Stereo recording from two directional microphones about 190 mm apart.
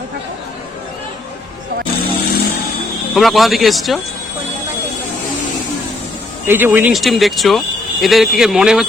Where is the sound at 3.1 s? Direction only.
Centre (ahead or behind).